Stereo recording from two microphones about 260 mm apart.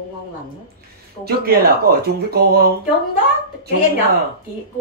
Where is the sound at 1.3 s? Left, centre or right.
Right.